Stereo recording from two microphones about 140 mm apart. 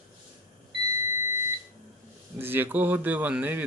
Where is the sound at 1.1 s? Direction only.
20° right (ahead or behind).